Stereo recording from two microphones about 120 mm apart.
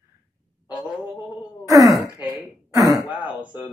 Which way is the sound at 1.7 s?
25° right (ahead or behind).